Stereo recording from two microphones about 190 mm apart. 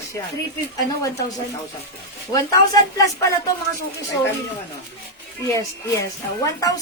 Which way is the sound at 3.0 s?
15° left (ahead or behind).